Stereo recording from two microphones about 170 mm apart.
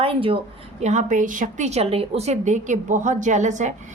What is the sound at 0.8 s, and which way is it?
A woman's voice, 45° right (ahead or behind).